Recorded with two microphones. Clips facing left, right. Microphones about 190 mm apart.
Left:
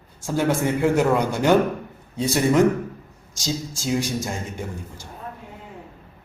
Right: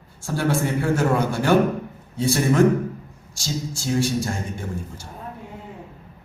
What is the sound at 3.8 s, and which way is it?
Speech, 15° left (ahead or behind).